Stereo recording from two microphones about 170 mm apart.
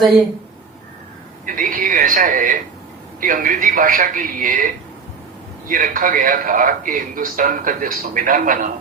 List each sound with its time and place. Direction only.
1.5 s a man's voice: 55° right (ahead or behind)